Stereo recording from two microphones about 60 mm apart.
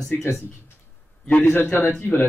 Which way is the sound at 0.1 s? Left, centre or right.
Left.